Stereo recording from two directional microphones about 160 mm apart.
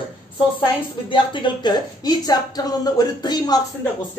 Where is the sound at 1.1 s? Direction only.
30° left (ahead or behind).